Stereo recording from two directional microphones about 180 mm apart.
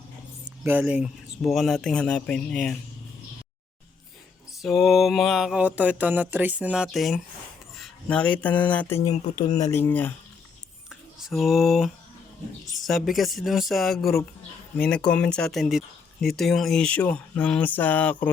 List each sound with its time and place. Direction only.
0.6 s speech: 10° right (ahead or behind)
4.6 s speech: centre (ahead or behind)
7.8 s a sound: 5° left (ahead or behind)
8.4 s speech: 10° left (ahead or behind)
9.0 s speech: 40° left (ahead or behind)
9.6 s speech: 15° left (ahead or behind)
10.8 s a sound: centre (ahead or behind)
12.7 s speech: centre (ahead or behind)